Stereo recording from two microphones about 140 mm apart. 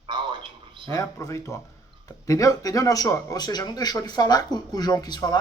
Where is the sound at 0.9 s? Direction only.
25° left (ahead or behind).